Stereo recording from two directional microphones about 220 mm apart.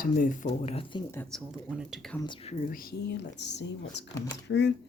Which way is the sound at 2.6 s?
40° left (ahead or behind).